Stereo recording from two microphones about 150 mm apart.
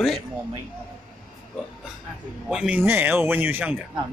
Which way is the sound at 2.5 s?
5° right (ahead or behind).